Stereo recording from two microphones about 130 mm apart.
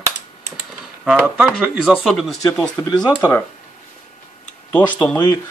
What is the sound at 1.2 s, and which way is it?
Speech, 5° right (ahead or behind).